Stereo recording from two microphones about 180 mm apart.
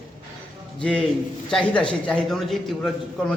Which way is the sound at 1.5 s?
5° left (ahead or behind).